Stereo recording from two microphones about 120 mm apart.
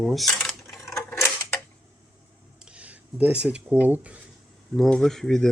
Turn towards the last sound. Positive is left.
turn(degrees=5)  # may be behind; listen again after turning